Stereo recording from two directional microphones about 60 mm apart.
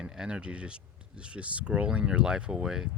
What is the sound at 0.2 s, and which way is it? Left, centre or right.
Speech, centre.